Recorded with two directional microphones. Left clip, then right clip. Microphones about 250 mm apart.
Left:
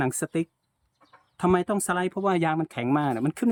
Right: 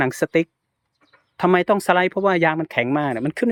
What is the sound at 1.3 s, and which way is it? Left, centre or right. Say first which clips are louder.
Speech: right 7 dB; centre.